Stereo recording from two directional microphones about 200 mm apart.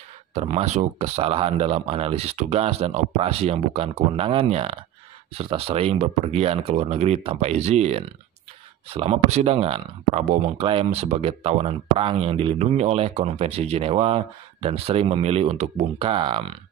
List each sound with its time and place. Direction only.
0.3 s speech: 30° right (ahead or behind)